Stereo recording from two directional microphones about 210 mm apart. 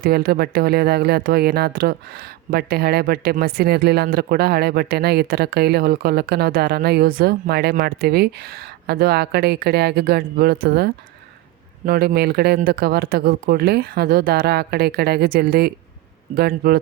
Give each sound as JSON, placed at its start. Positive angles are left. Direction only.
{"t": 0.0, "sound": "speech", "side_deg": -45}